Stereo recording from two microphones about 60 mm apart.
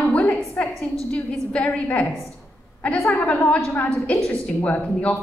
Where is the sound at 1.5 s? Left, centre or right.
Left.